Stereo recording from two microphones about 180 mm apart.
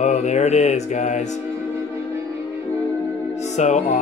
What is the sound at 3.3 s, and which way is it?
Music, 40° left (ahead or behind).